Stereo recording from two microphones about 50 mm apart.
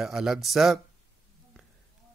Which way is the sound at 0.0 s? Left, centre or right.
Centre.